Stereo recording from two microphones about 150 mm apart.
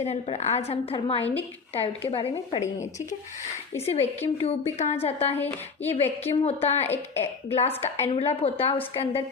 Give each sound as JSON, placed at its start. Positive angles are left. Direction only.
{"t": 0.0, "sound": "a woman's voice", "side_deg": 45}
{"t": 3.8, "sound": "a woman's voice", "side_deg": 40}
{"t": 5.4, "sound": "speech", "side_deg": 15}
{"t": 5.9, "sound": "a woman's voice", "side_deg": 45}
{"t": 6.8, "sound": "speech", "side_deg": 15}
{"t": 8.1, "sound": "a woman's voice", "side_deg": 40}